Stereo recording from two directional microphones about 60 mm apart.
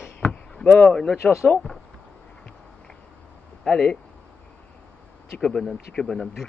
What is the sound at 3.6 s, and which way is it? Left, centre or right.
Speech, centre.